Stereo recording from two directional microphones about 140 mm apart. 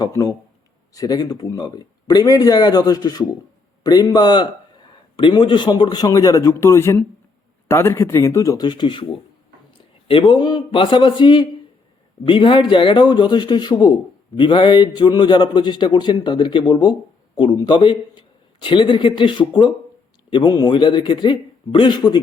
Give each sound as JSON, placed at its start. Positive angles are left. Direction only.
{"t": 0.0, "sound": "a man's voice", "side_deg": 25}